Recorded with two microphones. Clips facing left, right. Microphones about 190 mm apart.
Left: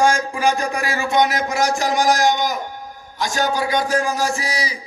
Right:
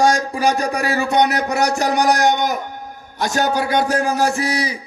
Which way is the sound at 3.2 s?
60° right (ahead or behind).